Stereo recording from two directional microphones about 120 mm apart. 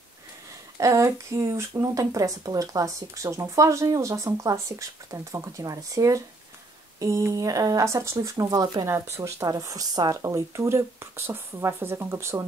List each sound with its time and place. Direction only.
0.7 s speech: 25° right (ahead or behind)